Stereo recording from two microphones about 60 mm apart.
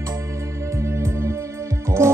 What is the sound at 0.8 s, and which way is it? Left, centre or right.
Music, right.